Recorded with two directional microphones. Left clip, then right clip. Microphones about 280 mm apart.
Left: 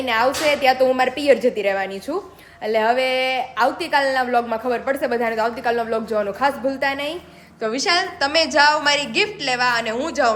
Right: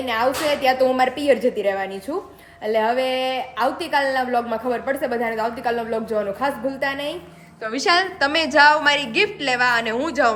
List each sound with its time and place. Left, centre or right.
0.0 s a woman's voice: centre